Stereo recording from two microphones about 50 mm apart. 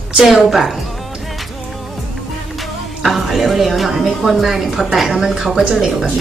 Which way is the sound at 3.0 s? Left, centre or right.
Centre.